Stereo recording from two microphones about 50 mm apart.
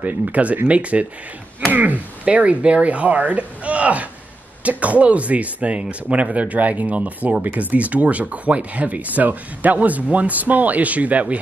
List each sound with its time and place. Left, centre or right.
0.0 s speech: right